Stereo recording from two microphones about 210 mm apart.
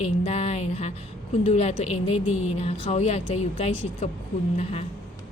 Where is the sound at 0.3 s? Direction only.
30° left (ahead or behind).